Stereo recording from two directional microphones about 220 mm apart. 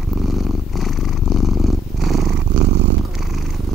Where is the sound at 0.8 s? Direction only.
Centre (ahead or behind).